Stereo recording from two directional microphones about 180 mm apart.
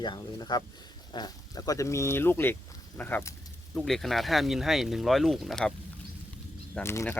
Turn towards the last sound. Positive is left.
turn(degrees=15)  # may be behind; listen again after turning